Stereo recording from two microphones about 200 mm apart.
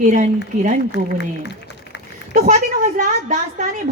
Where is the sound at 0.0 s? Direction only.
40° right (ahead or behind).